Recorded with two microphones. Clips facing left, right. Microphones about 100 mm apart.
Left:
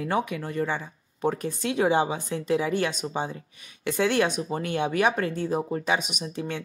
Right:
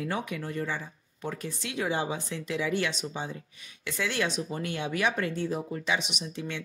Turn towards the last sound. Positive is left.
turn(degrees=45)  # may be behind; listen again after turning